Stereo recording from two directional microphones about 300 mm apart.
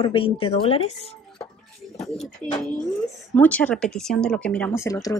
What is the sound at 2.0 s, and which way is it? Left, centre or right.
Speech, centre.